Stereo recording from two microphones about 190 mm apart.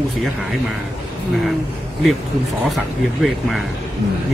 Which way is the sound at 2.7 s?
Centre (ahead or behind).